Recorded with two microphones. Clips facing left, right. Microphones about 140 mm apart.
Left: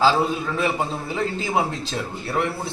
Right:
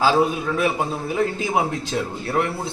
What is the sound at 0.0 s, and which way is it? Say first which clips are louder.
A man's voice: right 1 dB; 10° right (ahead or behind).